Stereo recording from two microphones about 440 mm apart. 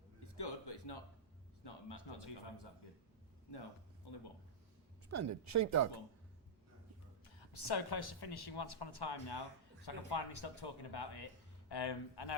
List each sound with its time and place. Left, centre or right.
0.3 s a sound: left
1.6 s speech: left
3.5 s speech: left
5.1 s speech: right
7.3 s speech: left